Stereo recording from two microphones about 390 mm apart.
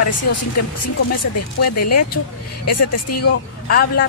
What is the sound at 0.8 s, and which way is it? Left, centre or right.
Speech, left.